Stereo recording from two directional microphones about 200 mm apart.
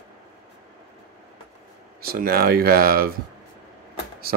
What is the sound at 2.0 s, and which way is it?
Speech, 50° right (ahead or behind).